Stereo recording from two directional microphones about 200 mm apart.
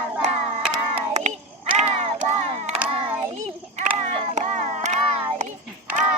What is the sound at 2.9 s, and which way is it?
Child singing, 30° right (ahead or behind).